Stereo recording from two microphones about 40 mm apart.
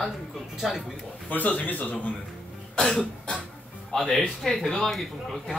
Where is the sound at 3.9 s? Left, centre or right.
Left.